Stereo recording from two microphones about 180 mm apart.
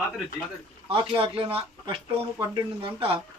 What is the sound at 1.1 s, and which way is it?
Speech, 30° right (ahead or behind).